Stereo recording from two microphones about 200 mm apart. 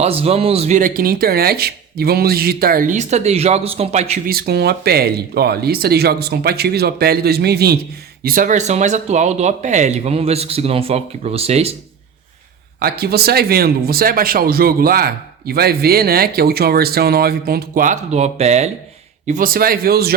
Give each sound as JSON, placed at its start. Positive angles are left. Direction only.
{"t": 0.0, "sound": "speech", "side_deg": -30}
{"t": 4.3, "sound": "speech", "side_deg": -50}
{"t": 12.8, "sound": "speech", "side_deg": -50}
{"t": 19.3, "sound": "speech", "side_deg": -45}